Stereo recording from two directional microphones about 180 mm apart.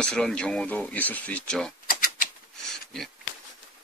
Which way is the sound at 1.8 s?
50° left (ahead or behind).